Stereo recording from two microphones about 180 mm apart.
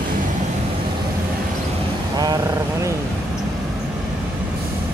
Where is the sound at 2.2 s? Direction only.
20° right (ahead or behind).